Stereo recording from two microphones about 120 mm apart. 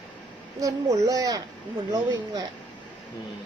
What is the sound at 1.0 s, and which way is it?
A child's voice, 30° right (ahead or behind).